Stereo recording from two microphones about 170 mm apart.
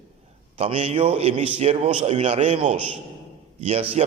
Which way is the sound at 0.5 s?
35° right (ahead or behind).